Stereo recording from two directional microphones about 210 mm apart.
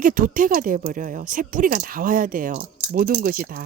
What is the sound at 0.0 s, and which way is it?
Speech, 40° right (ahead or behind).